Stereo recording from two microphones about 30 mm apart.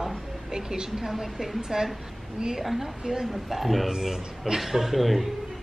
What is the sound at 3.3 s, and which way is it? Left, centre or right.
A woman's voice, centre.